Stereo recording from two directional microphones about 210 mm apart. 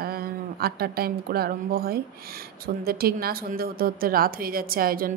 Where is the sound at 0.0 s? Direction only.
45° right (ahead or behind).